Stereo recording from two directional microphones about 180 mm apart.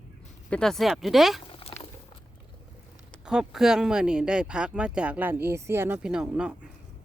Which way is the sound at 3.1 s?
5° right (ahead or behind).